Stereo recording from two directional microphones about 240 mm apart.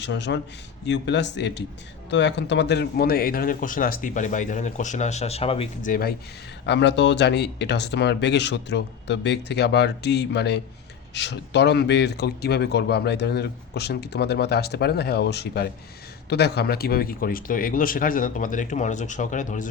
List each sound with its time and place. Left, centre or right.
0.0 s a man's voice: left
6.7 s a man's voice: left